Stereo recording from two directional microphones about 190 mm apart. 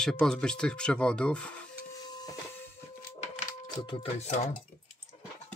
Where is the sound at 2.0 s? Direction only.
20° left (ahead or behind).